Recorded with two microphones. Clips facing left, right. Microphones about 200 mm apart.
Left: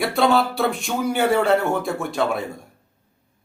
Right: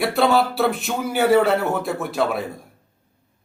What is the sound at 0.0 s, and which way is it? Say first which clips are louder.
Speech: right 1 dB; centre (ahead or behind).